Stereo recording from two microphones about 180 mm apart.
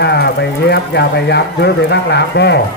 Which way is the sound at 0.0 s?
65° left (ahead or behind).